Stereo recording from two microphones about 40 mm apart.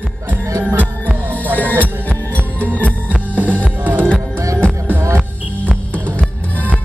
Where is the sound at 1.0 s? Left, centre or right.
Left.